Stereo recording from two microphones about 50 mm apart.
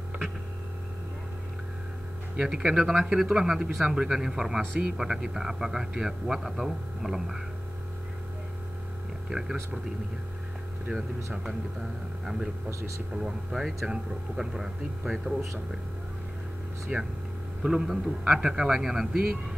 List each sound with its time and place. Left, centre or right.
2.3 s speech: centre
9.3 s speech: centre
13.2 s speech: centre
16.9 s speech: right
17.6 s speech: centre